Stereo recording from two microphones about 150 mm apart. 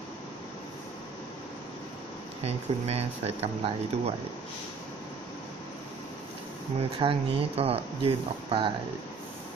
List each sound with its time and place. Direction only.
2.4 s speech: 45° right (ahead or behind)
6.8 s speech: 40° right (ahead or behind)